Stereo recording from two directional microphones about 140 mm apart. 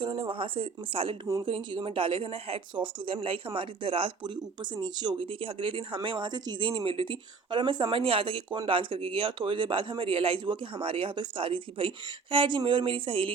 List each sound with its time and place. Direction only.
0.0 s speech: 40° right (ahead or behind)